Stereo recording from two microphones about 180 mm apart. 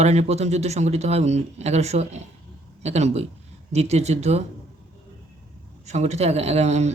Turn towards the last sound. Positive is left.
turn(degrees=-35)  # may be behind; listen again after turning